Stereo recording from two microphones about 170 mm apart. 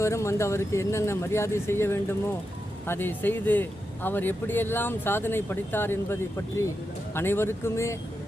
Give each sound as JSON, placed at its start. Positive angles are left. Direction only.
{"t": 0.0, "sound": "speech", "side_deg": 15}